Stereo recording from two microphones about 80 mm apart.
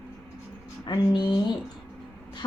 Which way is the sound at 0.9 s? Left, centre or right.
Left.